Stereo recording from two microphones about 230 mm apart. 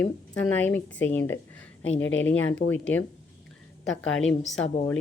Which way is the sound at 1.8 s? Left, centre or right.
Left.